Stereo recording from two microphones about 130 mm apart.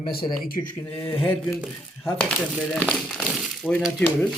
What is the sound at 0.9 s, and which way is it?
Speech, 15° left (ahead or behind).